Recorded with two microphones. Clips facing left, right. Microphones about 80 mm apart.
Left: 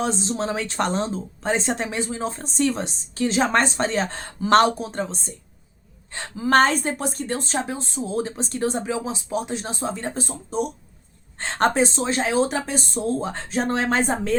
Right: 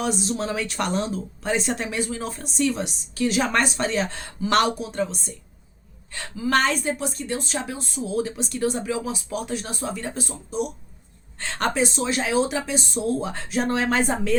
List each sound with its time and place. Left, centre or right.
0.0 s speech: left